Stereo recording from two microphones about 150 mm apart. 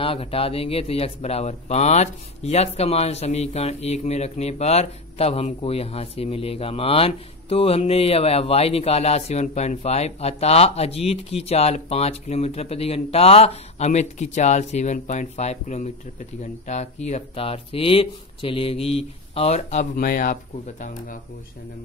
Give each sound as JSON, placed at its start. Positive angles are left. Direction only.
{"t": 0.0, "sound": "speech", "side_deg": 40}
{"t": 20.0, "sound": "speech", "side_deg": 65}